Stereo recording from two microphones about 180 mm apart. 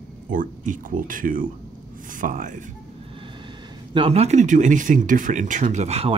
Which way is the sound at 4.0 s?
35° right (ahead or behind).